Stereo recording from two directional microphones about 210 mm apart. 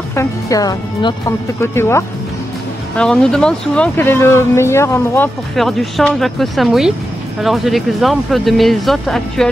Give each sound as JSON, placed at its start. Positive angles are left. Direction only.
{"t": 0.1, "sound": "speech", "side_deg": 15}